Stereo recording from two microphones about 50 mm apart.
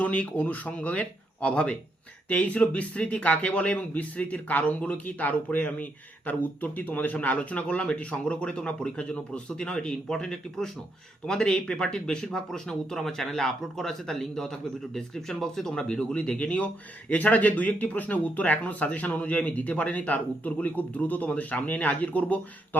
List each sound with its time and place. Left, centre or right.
0.0 s speech: left